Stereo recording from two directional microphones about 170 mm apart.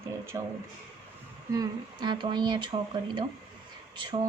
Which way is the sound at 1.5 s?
25° right (ahead or behind).